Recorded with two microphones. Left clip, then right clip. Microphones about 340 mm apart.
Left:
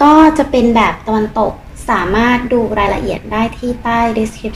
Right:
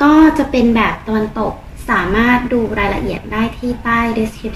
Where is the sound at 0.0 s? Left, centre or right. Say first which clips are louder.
Left 3 dB; left.